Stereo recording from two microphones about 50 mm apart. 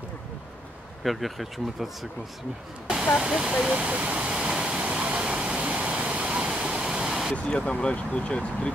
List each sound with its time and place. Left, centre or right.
1.0 s speech: centre
3.2 s waterfall: centre
7.3 s speech: left